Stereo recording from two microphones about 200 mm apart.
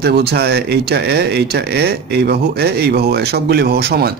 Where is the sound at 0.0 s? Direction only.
55° right (ahead or behind).